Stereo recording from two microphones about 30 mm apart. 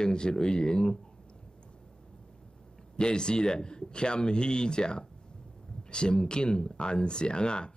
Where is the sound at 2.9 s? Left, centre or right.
Left.